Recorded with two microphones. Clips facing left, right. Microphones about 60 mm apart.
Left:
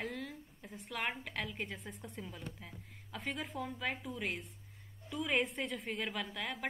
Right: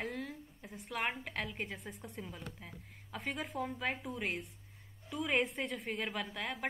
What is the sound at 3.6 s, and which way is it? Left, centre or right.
Speech, centre.